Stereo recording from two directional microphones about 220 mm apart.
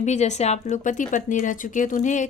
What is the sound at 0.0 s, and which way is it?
A woman's voice, 30° left (ahead or behind).